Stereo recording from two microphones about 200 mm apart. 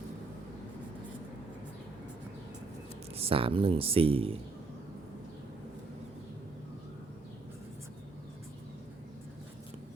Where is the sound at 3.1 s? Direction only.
30° right (ahead or behind).